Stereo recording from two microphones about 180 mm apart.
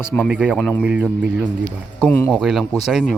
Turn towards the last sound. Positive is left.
turn(degrees=0)  # may be behind; listen again after turning